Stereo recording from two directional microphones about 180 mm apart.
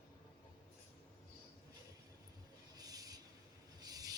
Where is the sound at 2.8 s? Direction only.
20° right (ahead or behind).